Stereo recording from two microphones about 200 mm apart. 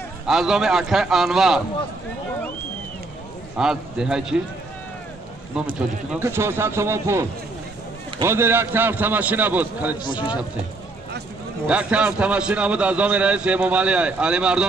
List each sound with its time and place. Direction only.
0.3 s a man's voice: centre (ahead or behind)
3.5 s a man's voice: 5° right (ahead or behind)
5.8 s a man's voice: 10° right (ahead or behind)
10.0 s speech: 25° left (ahead or behind)
11.6 s a man's voice: 5° right (ahead or behind)